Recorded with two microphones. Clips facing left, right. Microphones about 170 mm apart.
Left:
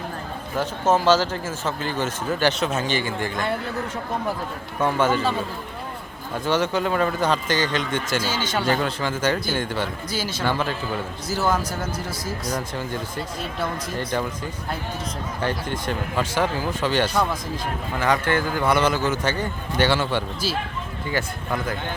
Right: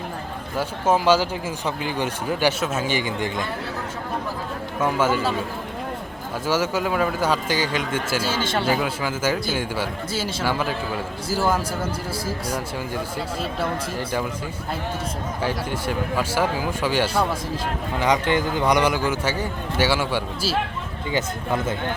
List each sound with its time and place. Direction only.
0.5 s speech: 10° right (ahead or behind)
4.8 s speech: 5° right (ahead or behind)
6.4 s speech: 5° right (ahead or behind)
8.3 s speech: 30° right (ahead or behind)
8.5 s speech: 5° right (ahead or behind)
15.4 s speech: 10° right (ahead or behind)
21.1 s speech: 20° right (ahead or behind)